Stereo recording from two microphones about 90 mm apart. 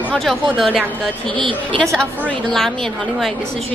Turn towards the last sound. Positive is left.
turn(degrees=5)  # may be behind; listen again after turning